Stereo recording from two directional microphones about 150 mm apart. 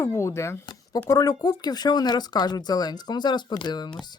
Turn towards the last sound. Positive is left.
turn(degrees=30)  # may be behind; listen again after turning